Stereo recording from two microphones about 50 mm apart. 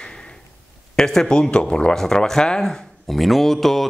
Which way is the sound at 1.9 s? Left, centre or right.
Centre.